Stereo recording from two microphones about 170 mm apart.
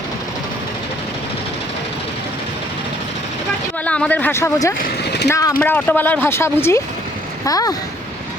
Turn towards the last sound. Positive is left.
turn(degrees=20)  # may be behind; listen again after turning